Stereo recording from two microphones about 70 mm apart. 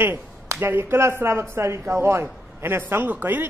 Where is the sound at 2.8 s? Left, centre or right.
Right.